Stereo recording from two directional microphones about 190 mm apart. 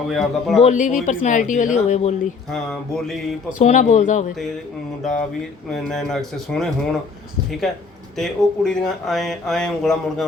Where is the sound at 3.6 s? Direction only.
40° left (ahead or behind).